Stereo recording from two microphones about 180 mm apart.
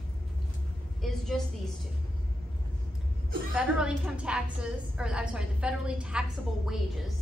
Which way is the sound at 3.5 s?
5° right (ahead or behind).